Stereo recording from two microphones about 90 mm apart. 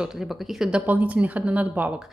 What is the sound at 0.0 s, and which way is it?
A woman's voice, 5° right (ahead or behind).